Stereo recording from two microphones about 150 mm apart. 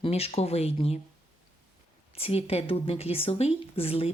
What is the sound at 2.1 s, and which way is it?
A woman's voice, 40° left (ahead or behind).